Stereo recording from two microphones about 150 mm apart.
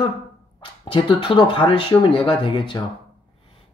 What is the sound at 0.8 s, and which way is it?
Speech, 35° left (ahead or behind).